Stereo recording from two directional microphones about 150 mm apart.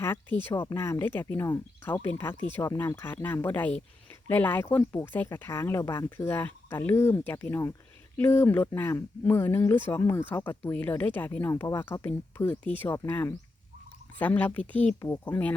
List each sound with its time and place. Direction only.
0.0 s speech: 15° left (ahead or behind)